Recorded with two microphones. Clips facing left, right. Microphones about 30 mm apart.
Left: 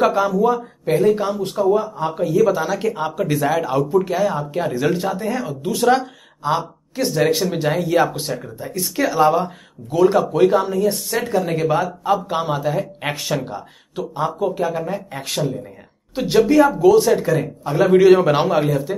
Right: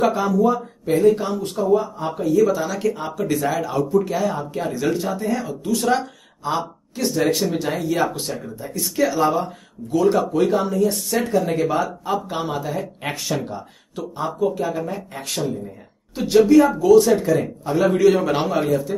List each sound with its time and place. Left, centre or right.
0.0 s speech: centre
0.4 s speech: left
5.9 s speech: centre
16.7 s speech: centre